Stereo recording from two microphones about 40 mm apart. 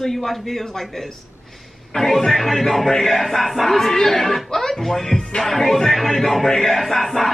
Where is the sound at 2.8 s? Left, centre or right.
Centre.